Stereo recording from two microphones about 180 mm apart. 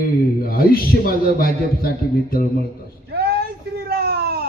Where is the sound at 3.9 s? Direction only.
60° right (ahead or behind).